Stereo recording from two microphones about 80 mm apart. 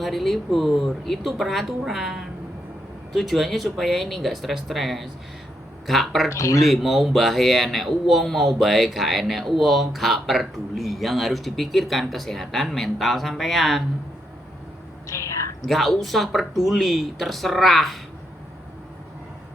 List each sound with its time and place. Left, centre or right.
0.0 s speech: centre
6.3 s speech: left
6.7 s speech: centre
15.0 s a sound: left
15.6 s speech: centre